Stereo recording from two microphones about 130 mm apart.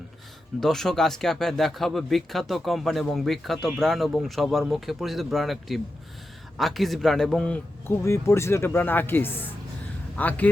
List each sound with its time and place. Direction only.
0.6 s a man's voice: 5° left (ahead or behind)